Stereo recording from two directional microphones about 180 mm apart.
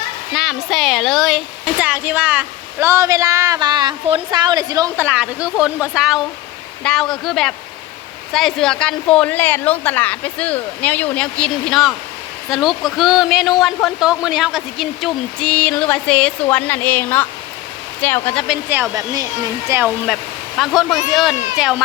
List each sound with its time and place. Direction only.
0.3 s speech: centre (ahead or behind); by 5.0 s 20° right (ahead or behind)
5.0 s a woman's voice: 5° right (ahead or behind); by 18.4 s 10° left (ahead or behind)
18.4 s speech: 5° right (ahead or behind)
20.6 s speech: centre (ahead or behind)